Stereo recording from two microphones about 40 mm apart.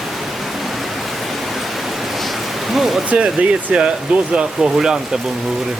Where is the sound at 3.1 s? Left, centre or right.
Right.